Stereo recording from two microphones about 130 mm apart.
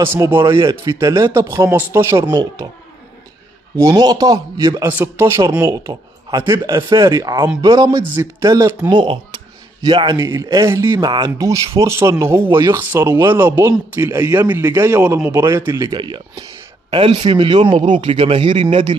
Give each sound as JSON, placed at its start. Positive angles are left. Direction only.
{"t": 0.0, "sound": "speech", "side_deg": -20}
{"t": 3.8, "sound": "a man's voice", "side_deg": -30}
{"t": 15.9, "sound": "a man's voice", "side_deg": -35}